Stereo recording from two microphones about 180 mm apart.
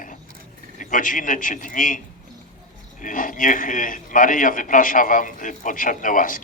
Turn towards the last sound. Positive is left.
turn(degrees=50)  # may be behind; listen again after turning